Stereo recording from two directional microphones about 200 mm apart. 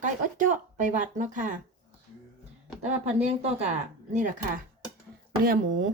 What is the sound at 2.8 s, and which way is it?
Speech, 35° right (ahead or behind).